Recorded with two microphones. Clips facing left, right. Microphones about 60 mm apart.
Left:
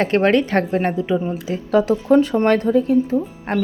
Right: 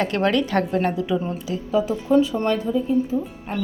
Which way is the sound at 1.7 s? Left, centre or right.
Left.